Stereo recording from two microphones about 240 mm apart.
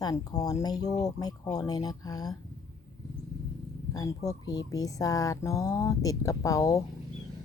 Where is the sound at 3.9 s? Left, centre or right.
Centre.